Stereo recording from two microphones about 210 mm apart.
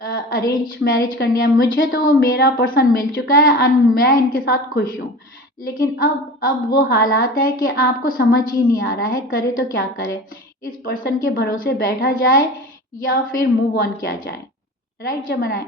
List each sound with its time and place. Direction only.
0.0 s a sound: 45° left (ahead or behind)
0.6 s a woman's voice: 45° left (ahead or behind)
13.4 s a woman's voice: 45° left (ahead or behind)